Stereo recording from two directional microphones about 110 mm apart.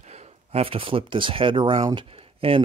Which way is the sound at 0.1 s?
75° right (ahead or behind).